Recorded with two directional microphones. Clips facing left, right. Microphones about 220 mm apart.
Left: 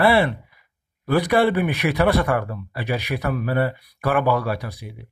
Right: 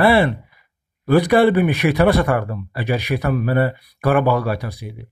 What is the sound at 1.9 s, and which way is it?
Speech, 45° right (ahead or behind).